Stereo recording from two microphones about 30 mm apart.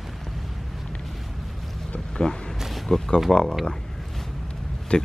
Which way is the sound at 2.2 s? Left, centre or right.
Left.